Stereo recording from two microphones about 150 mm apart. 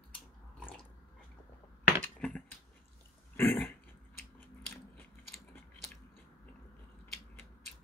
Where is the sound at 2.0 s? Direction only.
10° left (ahead or behind).